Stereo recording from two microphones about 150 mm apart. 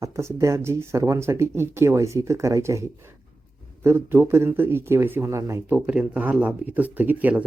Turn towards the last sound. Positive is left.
turn(degrees=-10)  # may be behind; listen again after turning